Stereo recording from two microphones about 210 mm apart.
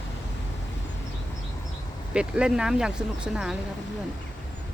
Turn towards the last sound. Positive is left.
turn(degrees=0)  # may be behind; listen again after turning